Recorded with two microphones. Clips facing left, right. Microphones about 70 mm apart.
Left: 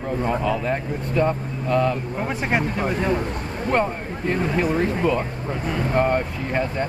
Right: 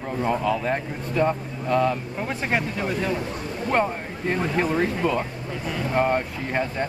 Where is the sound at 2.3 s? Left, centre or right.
Left.